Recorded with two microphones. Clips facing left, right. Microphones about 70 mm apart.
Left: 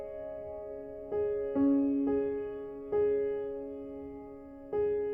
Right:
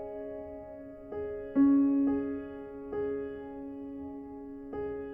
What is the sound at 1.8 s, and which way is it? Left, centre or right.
Music, right.